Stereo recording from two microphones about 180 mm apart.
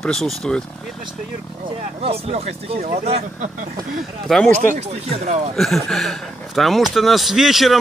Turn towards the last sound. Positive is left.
turn(degrees=0)  # may be behind; listen again after turning